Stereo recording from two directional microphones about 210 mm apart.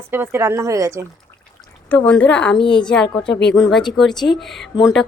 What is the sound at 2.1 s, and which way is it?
A woman's voice, 5° left (ahead or behind).